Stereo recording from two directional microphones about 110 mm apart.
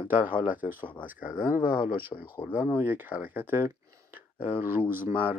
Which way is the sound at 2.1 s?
30° left (ahead or behind).